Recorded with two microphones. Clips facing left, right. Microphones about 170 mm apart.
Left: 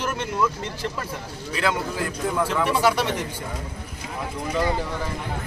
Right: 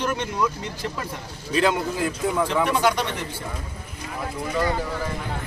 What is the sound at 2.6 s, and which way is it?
Speech, 5° left (ahead or behind).